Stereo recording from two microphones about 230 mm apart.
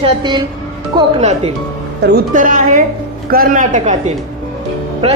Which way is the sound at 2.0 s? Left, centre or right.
Right.